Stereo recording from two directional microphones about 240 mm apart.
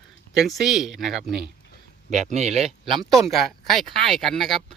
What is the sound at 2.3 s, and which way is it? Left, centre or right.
Speech, right.